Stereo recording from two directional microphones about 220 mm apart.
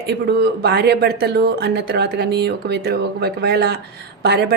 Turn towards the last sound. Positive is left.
turn(degrees=-50)  # may be behind; listen again after turning